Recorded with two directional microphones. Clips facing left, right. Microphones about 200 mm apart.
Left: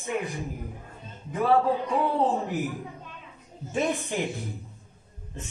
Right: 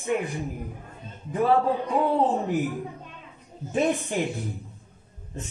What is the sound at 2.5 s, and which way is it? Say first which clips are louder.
Speech: right 4 dB; centre (ahead or behind).